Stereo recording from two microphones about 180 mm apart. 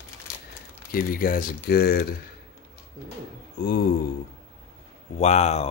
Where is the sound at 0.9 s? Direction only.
55° left (ahead or behind).